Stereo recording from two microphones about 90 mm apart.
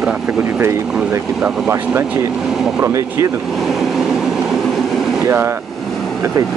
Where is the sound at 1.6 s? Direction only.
25° right (ahead or behind).